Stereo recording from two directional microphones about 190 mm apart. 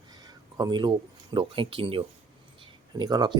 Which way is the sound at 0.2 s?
20° right (ahead or behind).